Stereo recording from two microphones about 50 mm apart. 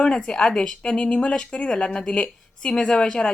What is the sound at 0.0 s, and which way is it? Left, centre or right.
A woman's voice, centre.